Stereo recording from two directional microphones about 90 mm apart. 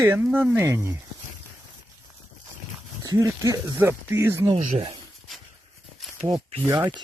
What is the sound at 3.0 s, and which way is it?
Speech, 35° right (ahead or behind).